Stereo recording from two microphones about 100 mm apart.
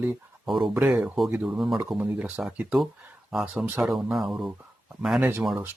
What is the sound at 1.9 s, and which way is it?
Speech, 15° right (ahead or behind).